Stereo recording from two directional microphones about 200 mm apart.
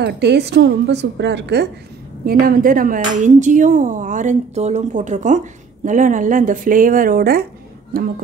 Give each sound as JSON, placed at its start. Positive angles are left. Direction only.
{"t": 0.0, "sound": "a woman's voice", "side_deg": -55}
{"t": 2.2, "sound": "a woman's voice", "side_deg": -45}